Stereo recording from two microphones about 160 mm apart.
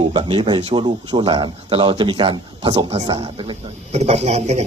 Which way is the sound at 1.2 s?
30° right (ahead or behind).